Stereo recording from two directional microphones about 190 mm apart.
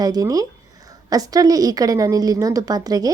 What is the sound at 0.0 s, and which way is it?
A woman's voice, 20° right (ahead or behind).